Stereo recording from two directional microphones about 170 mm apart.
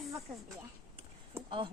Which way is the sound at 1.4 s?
30° right (ahead or behind).